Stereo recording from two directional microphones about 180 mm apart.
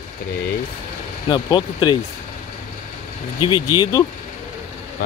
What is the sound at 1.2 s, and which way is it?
Speech, 25° left (ahead or behind).